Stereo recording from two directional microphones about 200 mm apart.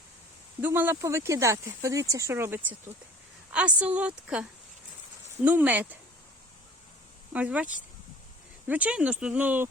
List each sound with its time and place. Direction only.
0.6 s a woman's voice: 10° right (ahead or behind)
5.5 s speech: 10° right (ahead or behind)
7.3 s speech: 5° right (ahead or behind)